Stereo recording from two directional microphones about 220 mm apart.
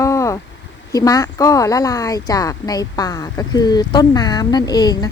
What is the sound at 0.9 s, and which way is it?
A woman's voice, 15° left (ahead or behind).